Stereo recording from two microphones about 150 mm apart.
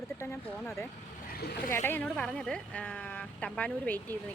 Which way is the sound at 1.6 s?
15° left (ahead or behind).